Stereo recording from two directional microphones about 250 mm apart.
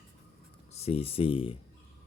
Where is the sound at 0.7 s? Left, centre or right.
Left.